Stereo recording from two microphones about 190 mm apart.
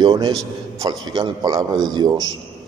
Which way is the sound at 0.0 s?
20° right (ahead or behind).